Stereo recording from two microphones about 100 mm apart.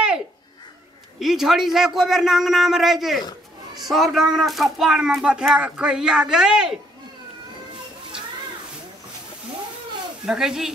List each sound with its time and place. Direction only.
1.2 s a man's voice: 5° right (ahead or behind)
10.2 s a man's voice: 5° right (ahead or behind)